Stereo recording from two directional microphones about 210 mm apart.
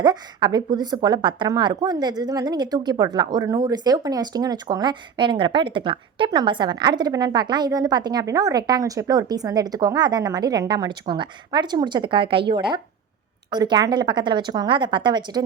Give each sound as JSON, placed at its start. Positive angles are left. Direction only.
{"t": 0.0, "sound": "a woman's voice", "side_deg": -20}